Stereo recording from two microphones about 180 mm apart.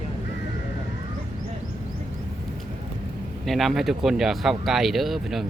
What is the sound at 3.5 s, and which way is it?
Speech, centre (ahead or behind).